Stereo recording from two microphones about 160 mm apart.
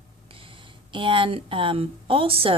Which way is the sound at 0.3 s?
35° right (ahead or behind).